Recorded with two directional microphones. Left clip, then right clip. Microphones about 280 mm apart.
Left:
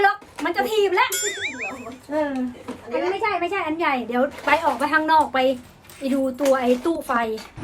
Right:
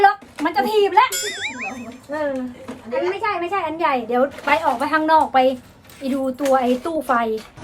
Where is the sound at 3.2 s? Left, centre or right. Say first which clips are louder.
Right 1 dB; centre.